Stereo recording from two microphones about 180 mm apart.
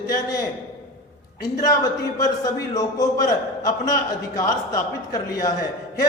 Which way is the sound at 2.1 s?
20° left (ahead or behind).